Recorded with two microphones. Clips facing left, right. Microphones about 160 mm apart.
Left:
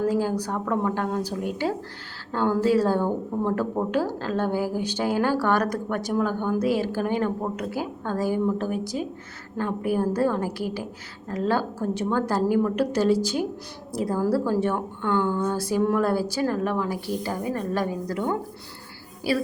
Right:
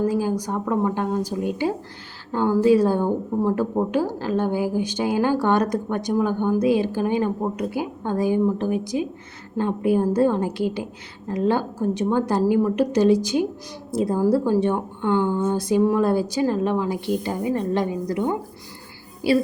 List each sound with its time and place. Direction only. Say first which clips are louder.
0.0 s a woman's voice: right 2 dB; 10° right (ahead or behind)